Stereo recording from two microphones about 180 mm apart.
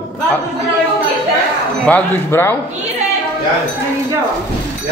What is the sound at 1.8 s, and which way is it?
Speech, 10° left (ahead or behind).